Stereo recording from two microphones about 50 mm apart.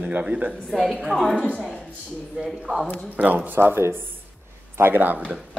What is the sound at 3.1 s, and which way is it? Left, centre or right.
Speech, right.